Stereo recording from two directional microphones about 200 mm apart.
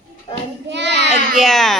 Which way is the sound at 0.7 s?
60° right (ahead or behind).